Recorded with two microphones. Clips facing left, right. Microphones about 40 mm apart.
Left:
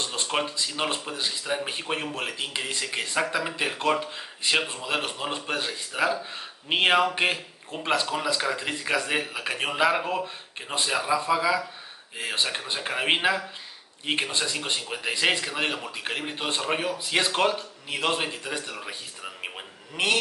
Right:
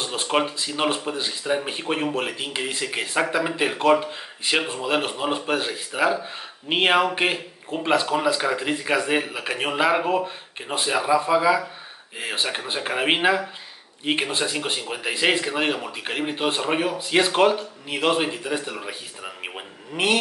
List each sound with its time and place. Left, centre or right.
0.0 s speech: centre